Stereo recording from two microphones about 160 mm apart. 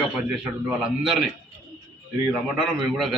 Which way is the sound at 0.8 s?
Centre (ahead or behind).